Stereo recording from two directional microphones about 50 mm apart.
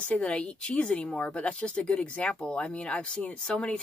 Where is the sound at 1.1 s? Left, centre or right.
Left.